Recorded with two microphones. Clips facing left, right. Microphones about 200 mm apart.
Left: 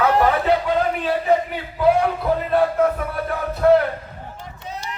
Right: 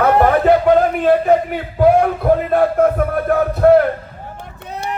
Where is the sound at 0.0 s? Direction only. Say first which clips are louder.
Right 5 dB; 55° right (ahead or behind).